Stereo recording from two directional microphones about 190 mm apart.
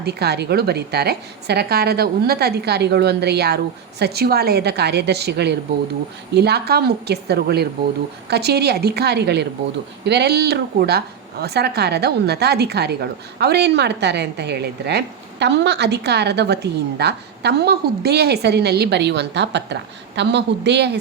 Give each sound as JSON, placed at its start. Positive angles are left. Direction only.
{"t": 0.0, "sound": "speech", "side_deg": -60}